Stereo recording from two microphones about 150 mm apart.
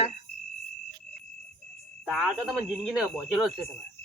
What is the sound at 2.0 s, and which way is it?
Speech, centre (ahead or behind).